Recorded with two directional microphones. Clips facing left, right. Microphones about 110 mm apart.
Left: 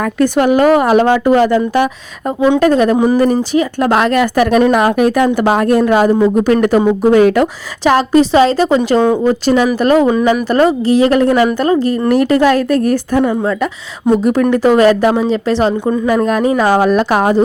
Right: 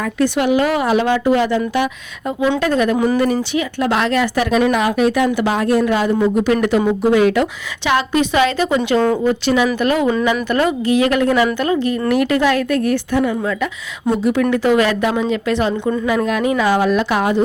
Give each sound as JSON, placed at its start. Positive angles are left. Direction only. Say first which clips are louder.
{"t": 0.0, "sound": "a woman's voice", "louder": "left 5 dB", "side_deg": 45}
{"t": 15.3, "sound": "a woman's voice", "louder": "left 4 dB", "side_deg": 35}